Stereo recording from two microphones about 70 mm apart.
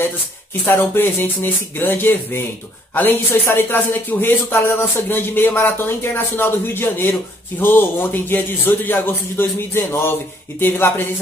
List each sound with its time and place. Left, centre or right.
0.7 s a man's voice: left